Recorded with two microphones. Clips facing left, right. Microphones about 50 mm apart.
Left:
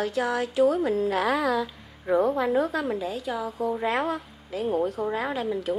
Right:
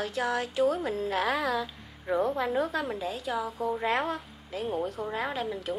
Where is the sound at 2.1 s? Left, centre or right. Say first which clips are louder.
Left 5 dB; left.